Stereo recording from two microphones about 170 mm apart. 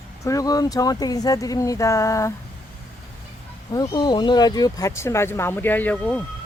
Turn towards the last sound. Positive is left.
turn(degrees=10)  # may be behind; listen again after turning